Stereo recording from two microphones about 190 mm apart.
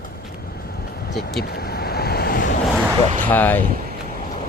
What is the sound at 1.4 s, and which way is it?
Vehicle, 55° left (ahead or behind).